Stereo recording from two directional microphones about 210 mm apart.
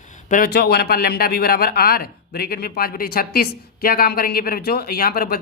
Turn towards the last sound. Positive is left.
turn(degrees=45)  # may be behind; listen again after turning